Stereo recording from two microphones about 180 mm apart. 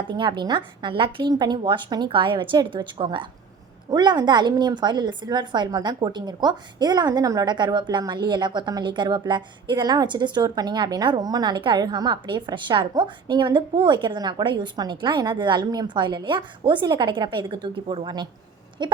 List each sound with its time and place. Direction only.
0.1 s a woman's voice: 25° right (ahead or behind)